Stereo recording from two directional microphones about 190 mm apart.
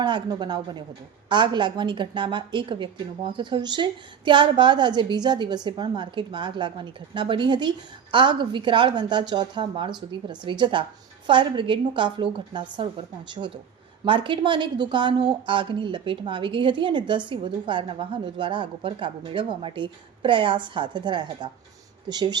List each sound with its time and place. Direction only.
0.0 s a woman's voice: 25° right (ahead or behind)